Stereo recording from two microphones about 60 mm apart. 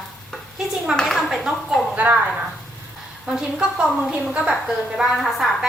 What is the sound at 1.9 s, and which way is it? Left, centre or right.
Speech, right.